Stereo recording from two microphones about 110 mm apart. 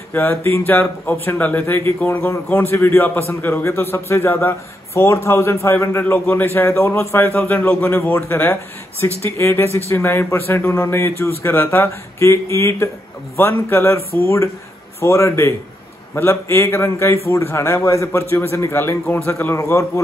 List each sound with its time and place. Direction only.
0.1 s a man's voice: 20° left (ahead or behind)